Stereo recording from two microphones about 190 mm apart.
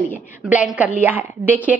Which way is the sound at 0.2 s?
10° right (ahead or behind).